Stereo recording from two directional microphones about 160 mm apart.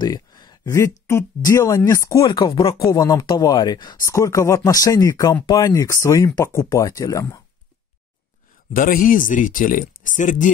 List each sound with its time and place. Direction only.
0.0 s speech: 25° left (ahead or behind)
8.7 s speech: 60° left (ahead or behind)